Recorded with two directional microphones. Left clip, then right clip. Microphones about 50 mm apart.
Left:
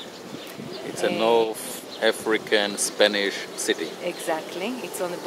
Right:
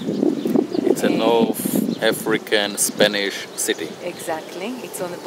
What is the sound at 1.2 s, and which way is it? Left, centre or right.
Speech, right.